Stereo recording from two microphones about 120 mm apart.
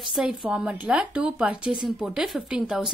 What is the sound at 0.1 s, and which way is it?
A woman's voice, 5° right (ahead or behind).